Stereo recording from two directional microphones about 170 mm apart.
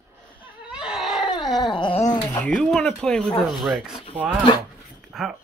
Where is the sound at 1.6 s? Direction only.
25° left (ahead or behind).